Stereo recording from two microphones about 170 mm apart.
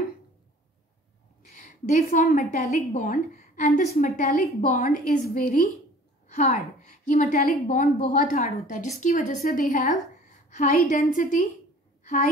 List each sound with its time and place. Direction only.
1.6 s a woman's voice: 50° left (ahead or behind)
7.1 s a woman's voice: 50° left (ahead or behind)